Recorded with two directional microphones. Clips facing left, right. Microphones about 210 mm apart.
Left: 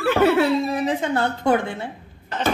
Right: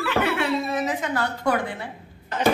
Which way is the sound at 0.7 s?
30° left (ahead or behind).